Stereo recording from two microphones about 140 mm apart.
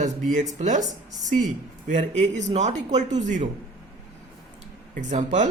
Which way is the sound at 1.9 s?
60° right (ahead or behind).